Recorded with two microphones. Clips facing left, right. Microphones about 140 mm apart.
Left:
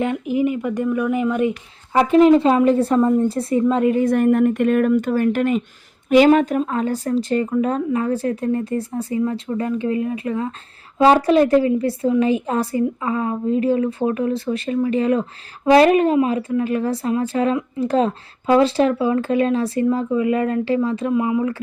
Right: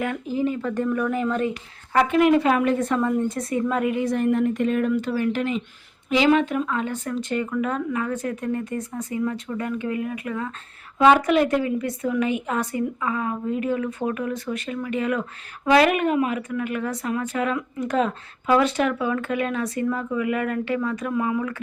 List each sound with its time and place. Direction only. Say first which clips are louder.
0.0 s speech: left 5 dB; 20° left (ahead or behind)
2.0 s a woman's voice: left 7 dB; 30° left (ahead or behind)
3.9 s a woman's voice: left 6 dB; 50° left (ahead or behind); by 21.6 s 25° left (ahead or behind)